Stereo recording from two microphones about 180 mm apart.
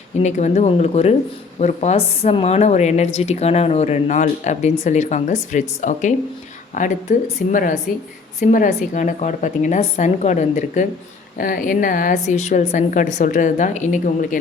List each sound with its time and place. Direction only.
0.2 s a woman's voice: 40° left (ahead or behind)
11.3 s a woman's voice: 50° left (ahead or behind)